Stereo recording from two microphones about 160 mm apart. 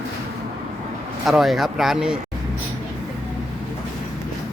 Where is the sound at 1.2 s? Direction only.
Centre (ahead or behind).